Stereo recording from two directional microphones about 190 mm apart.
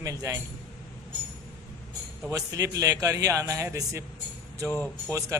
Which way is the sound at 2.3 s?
15° right (ahead or behind).